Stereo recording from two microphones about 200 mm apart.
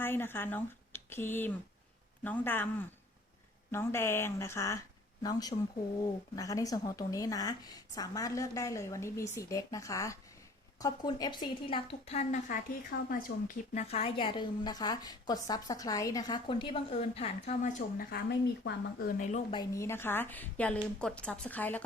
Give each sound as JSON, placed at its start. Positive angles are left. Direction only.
{"t": 0.0, "sound": "a woman's voice", "side_deg": 10}
{"t": 19.3, "sound": "a woman's voice", "side_deg": 25}
{"t": 19.7, "sound": "speech", "side_deg": 15}